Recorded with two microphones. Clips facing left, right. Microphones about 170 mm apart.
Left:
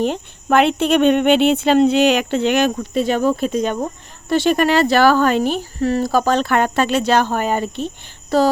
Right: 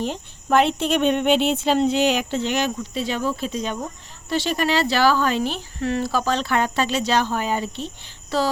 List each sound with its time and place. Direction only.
0.0 s speech: 60° left (ahead or behind)